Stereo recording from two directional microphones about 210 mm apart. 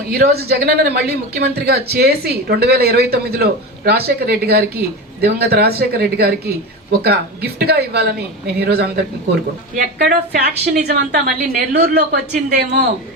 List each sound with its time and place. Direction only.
0.1 s speech: 50° right (ahead or behind)